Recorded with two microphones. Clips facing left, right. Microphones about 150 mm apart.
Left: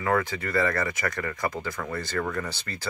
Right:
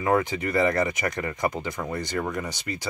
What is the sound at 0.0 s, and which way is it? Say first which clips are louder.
Speech: right 3 dB; 20° right (ahead or behind).